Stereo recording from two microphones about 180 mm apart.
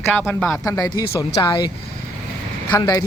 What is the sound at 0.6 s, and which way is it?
Speech, 20° left (ahead or behind).